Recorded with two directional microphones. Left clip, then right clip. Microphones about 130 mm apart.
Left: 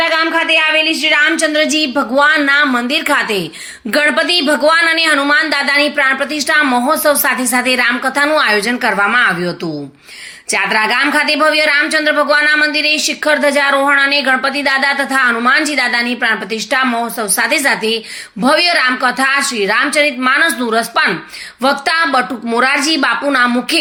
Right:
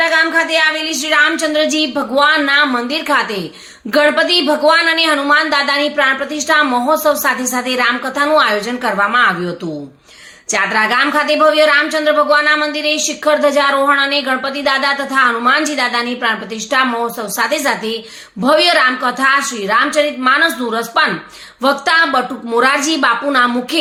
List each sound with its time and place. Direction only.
0.0 s a sound: 10° left (ahead or behind)
0.5 s speech: 15° left (ahead or behind)
10.5 s speech: 15° left (ahead or behind)